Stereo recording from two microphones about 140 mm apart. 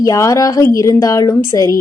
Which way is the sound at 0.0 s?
25° left (ahead or behind).